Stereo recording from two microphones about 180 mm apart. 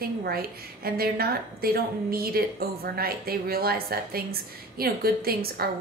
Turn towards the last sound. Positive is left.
turn(degrees=-60)  # may be behind; listen again after turning